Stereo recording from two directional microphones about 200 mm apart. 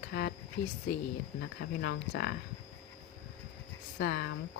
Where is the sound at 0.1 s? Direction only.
55° left (ahead or behind).